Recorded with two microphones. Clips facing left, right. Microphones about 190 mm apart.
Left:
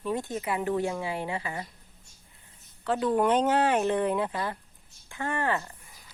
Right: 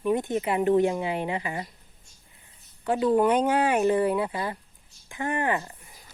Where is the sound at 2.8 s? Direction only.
15° right (ahead or behind).